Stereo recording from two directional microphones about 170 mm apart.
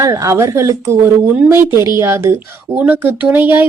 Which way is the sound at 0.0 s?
20° right (ahead or behind).